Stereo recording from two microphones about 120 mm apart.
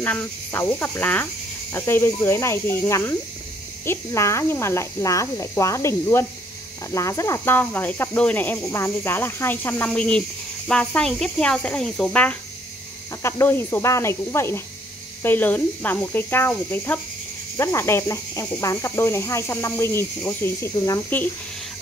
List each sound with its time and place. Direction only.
0.0 s cricket: 15° left (ahead or behind)